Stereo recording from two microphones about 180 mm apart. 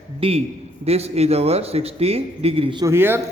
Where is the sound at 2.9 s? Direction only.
10° right (ahead or behind).